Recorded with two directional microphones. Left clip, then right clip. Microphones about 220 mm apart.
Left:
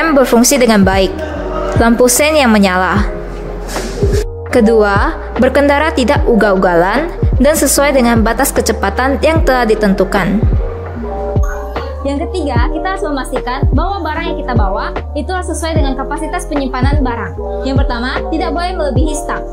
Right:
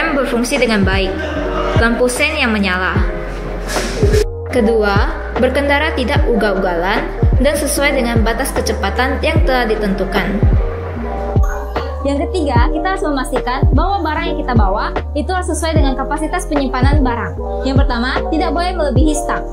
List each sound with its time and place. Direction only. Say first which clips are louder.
0.0 s a woman's voice: left 6 dB; 55° left (ahead or behind)
4.5 s a woman's voice: left 6 dB; 50° left (ahead or behind)
12.0 s a woman's voice: even; centre (ahead or behind)